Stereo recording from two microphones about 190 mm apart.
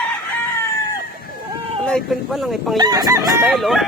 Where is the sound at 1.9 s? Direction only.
Centre (ahead or behind).